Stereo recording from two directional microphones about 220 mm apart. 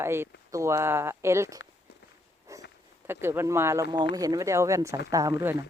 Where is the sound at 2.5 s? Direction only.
15° right (ahead or behind).